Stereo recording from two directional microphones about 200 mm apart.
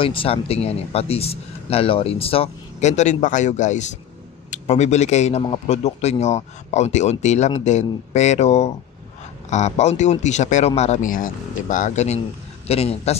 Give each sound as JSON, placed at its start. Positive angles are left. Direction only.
{"t": 0.0, "sound": "a man's voice", "side_deg": 25}